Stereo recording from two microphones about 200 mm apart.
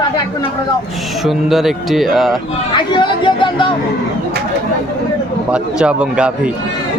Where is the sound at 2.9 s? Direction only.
25° left (ahead or behind).